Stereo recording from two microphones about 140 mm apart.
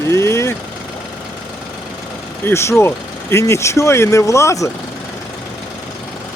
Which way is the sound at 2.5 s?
20° left (ahead or behind).